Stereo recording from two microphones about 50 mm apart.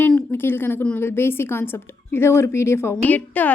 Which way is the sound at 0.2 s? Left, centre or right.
Left.